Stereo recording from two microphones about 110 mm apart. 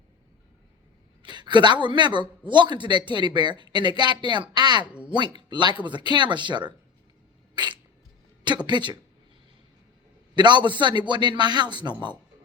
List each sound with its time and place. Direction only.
1.2 s speech: 45° right (ahead or behind)
4.9 s speech: 10° right (ahead or behind)
5.1 s speech: 45° right (ahead or behind)
7.5 s a sound: 45° right (ahead or behind)
8.4 s speech: 45° right (ahead or behind)
10.3 s speech: 45° right (ahead or behind)